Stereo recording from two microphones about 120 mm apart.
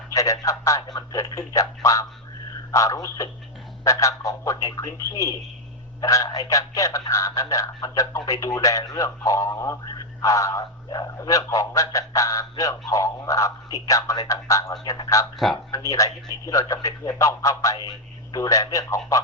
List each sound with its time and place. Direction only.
0.1 s speech: 25° left (ahead or behind)
18.4 s speech: 25° left (ahead or behind)